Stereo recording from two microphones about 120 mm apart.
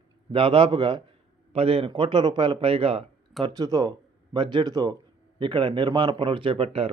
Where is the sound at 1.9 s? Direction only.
40° right (ahead or behind).